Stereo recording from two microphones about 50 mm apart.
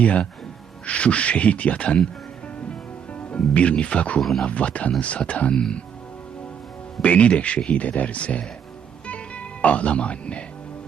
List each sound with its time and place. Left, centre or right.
0.0 s speech: left
2.6 s music: left
4.2 s speech: centre
4.4 s speech: left
7.0 s speech: left
9.0 s music: left